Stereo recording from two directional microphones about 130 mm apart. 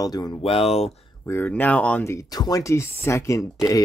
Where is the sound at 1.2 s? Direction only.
15° left (ahead or behind).